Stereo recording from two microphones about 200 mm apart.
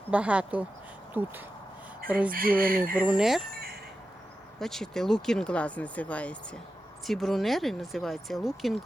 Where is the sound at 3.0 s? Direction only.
5° right (ahead or behind).